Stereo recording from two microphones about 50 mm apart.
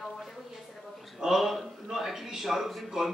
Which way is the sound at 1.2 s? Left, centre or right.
Centre.